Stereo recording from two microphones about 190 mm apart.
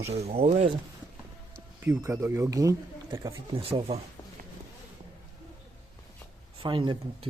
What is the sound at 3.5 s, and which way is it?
Speech, 30° right (ahead or behind).